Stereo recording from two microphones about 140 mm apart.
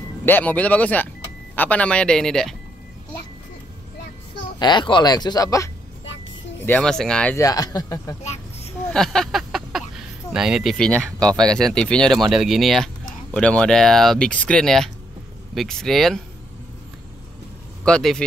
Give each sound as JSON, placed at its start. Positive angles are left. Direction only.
{"t": 0.2, "sound": "speech", "side_deg": 15}
{"t": 4.6, "sound": "speech", "side_deg": 30}
{"t": 6.6, "sound": "speech", "side_deg": 10}
{"t": 7.3, "sound": "speech", "side_deg": 25}
{"t": 8.2, "sound": "a sound", "side_deg": 55}
{"t": 8.9, "sound": "a sound", "side_deg": 5}
{"t": 11.1, "sound": "speech", "side_deg": 5}
{"t": 17.8, "sound": "speech", "side_deg": 5}